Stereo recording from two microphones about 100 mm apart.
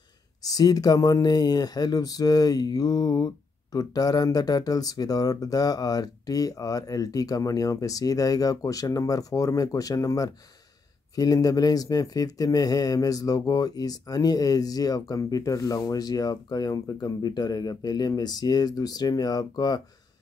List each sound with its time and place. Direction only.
0.5 s speech: 40° left (ahead or behind)